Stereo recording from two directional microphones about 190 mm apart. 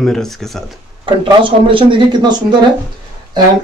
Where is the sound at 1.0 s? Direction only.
25° right (ahead or behind).